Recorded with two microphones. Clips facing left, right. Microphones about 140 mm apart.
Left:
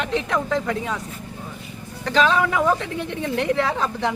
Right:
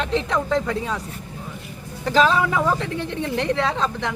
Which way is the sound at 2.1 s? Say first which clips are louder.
Right 1 dB; 5° right (ahead or behind).